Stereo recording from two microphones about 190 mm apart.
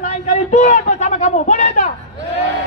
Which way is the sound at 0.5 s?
40° left (ahead or behind).